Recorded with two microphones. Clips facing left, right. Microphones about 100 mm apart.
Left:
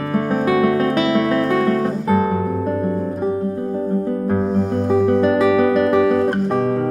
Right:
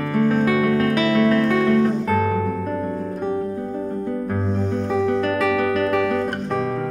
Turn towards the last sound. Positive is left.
turn(degrees=5)  # may be behind; listen again after turning